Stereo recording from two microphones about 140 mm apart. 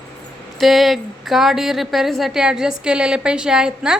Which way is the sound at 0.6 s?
Centre (ahead or behind).